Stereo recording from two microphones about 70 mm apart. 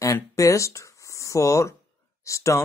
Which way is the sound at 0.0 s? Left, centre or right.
Left.